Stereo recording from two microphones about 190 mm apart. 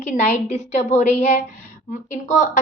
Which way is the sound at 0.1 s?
35° left (ahead or behind).